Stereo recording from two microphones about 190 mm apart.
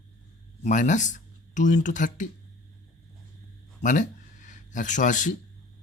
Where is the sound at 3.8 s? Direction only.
40° left (ahead or behind).